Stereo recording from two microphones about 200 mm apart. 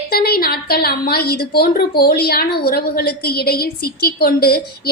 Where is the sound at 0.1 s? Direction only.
50° left (ahead or behind).